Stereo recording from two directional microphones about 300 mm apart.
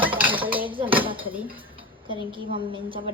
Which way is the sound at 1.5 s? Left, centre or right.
Centre.